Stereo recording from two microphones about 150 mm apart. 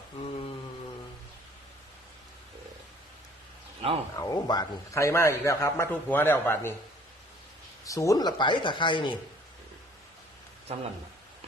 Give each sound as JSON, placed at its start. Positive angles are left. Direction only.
{"t": 4.1, "sound": "a man's voice", "side_deg": 25}
{"t": 7.9, "sound": "speech", "side_deg": 20}
{"t": 10.7, "sound": "speech", "side_deg": -45}